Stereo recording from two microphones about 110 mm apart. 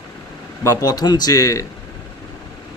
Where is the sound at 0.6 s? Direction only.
35° left (ahead or behind).